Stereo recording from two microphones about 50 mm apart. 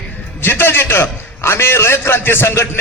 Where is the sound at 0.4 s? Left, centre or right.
Left.